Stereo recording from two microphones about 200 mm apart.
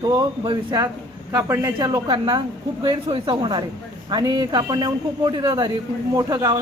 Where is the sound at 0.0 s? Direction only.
20° right (ahead or behind).